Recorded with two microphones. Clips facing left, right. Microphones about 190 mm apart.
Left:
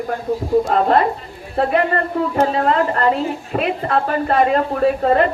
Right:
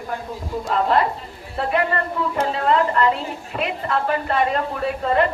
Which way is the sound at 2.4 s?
45° left (ahead or behind).